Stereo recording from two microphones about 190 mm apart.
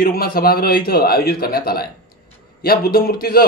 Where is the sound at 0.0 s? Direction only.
50° left (ahead or behind).